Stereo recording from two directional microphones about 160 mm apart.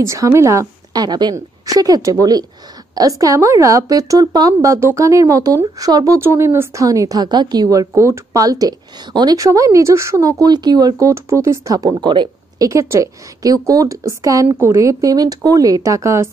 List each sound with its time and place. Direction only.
0.0 s speech: 20° right (ahead or behind)